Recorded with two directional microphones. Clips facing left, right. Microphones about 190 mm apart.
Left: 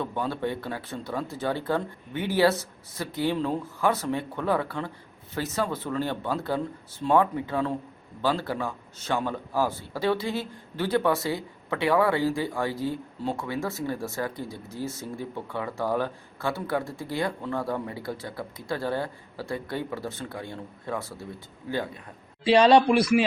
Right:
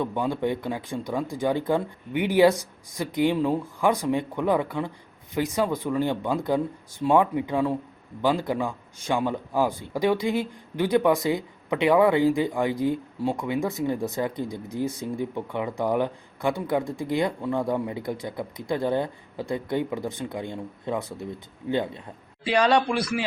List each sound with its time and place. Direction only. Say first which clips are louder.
0.0 s a man's voice: right 3 dB; 15° right (ahead or behind)
22.4 s speech: left 4 dB; 25° left (ahead or behind)